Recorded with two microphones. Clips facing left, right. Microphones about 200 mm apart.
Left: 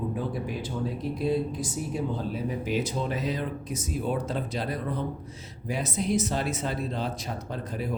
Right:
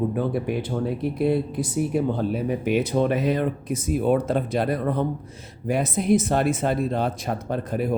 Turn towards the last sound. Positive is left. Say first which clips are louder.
# right 8 dB
turn(degrees=-55)  # may be behind; listen again after turning